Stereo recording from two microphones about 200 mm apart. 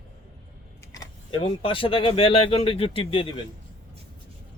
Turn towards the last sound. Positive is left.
turn(degrees=25)  # may be behind; listen again after turning